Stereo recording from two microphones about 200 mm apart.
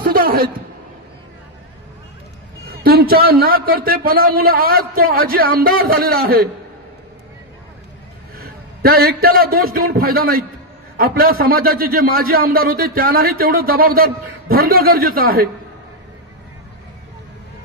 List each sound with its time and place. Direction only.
0.0 s a sound: 45° right (ahead or behind)
2.6 s a man's voice: 50° right (ahead or behind)
8.4 s a man's voice: 50° right (ahead or behind)